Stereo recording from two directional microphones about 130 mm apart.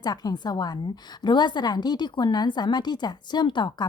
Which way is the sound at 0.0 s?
30° left (ahead or behind).